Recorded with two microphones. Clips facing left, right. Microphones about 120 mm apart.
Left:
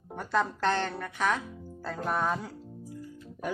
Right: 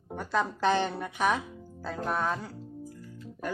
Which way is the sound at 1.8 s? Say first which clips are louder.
Even; centre (ahead or behind).